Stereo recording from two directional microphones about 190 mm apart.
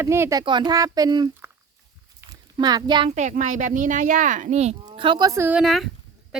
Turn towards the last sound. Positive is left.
turn(degrees=0)  # may be behind; listen again after turning